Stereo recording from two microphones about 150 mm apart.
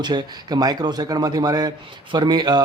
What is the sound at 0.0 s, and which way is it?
Speech, 30° right (ahead or behind).